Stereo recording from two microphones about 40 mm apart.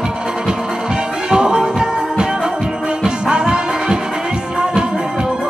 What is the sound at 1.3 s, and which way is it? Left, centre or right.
Music, centre.